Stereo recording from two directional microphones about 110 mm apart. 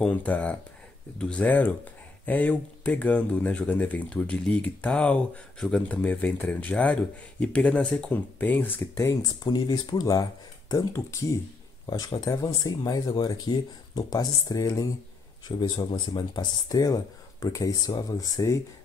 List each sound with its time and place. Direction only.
0.0 s speech: 15° left (ahead or behind)
8.9 s speech: 30° left (ahead or behind)
15.4 s speech: 45° left (ahead or behind)